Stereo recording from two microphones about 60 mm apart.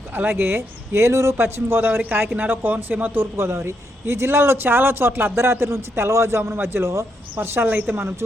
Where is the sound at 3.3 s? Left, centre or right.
Right.